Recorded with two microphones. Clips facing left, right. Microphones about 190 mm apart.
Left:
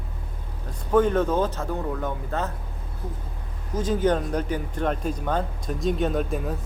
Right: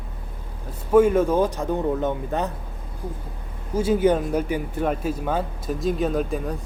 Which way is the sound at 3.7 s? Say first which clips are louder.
Right 4 dB; 10° right (ahead or behind).